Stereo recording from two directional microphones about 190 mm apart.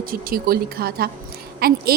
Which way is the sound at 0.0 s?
50° right (ahead or behind).